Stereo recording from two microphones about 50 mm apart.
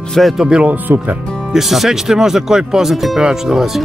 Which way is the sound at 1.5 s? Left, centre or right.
Centre.